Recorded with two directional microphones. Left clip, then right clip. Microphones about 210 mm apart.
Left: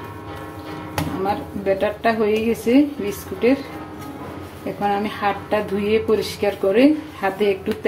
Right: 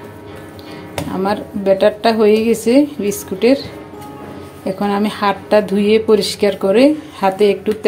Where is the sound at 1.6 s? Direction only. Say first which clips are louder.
Right 7 dB; 30° right (ahead or behind).